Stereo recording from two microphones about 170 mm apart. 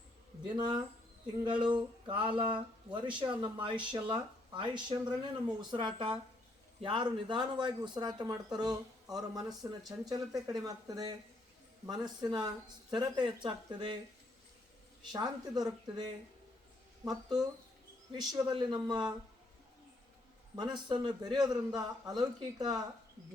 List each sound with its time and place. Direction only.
0.4 s speech: 25° right (ahead or behind)
15.1 s speech: 25° right (ahead or behind)
20.6 s speech: 25° right (ahead or behind)